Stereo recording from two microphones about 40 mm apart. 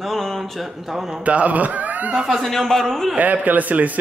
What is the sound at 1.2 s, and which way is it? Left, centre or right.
Speech, right.